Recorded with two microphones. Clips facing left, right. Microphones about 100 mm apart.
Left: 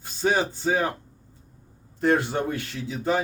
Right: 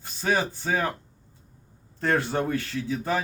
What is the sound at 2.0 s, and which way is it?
Speech, 20° left (ahead or behind).